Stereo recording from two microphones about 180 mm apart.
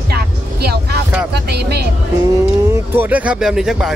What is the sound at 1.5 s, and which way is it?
Speech, 65° right (ahead or behind).